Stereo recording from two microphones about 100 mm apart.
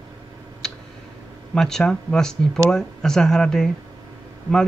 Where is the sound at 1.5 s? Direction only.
5° left (ahead or behind).